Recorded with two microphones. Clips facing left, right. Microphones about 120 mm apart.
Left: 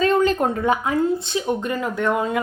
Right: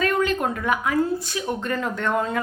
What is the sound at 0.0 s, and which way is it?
Speech, 30° left (ahead or behind).